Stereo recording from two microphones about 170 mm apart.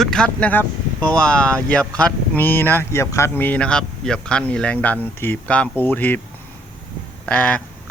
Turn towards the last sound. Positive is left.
turn(degrees=10)  # may be behind; listen again after turning